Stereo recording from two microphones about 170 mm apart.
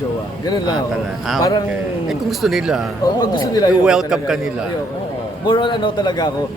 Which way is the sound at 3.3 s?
25° left (ahead or behind).